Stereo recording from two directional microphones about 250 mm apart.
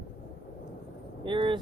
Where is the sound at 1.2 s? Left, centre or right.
Centre.